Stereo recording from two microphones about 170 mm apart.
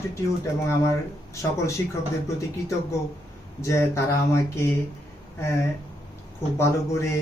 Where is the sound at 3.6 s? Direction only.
15° left (ahead or behind).